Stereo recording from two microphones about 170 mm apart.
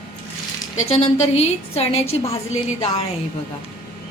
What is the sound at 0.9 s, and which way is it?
A woman's voice, 40° left (ahead or behind).